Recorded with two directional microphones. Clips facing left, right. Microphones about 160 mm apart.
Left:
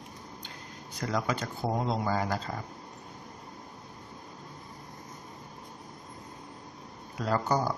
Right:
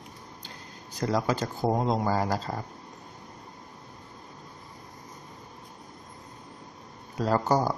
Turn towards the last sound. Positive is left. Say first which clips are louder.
# right 4 dB
turn(degrees=-40)  # may be behind; listen again after turning